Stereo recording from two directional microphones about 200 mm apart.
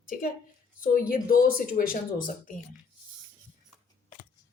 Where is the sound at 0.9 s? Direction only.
45° left (ahead or behind).